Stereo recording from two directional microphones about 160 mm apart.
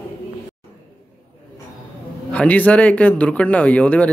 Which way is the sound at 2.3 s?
10° left (ahead or behind).